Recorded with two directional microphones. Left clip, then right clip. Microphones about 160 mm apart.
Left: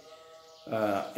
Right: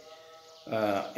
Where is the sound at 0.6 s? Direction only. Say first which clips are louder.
Even; 10° left (ahead or behind).